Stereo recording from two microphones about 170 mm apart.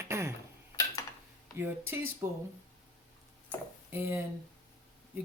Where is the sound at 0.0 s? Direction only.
15° right (ahead or behind).